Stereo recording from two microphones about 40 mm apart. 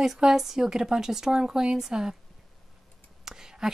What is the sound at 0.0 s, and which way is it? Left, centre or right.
Speech, centre.